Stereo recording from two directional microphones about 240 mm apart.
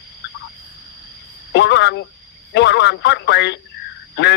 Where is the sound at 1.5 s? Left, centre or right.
Left.